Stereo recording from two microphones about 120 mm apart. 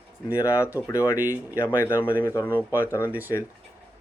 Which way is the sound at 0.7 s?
25° left (ahead or behind).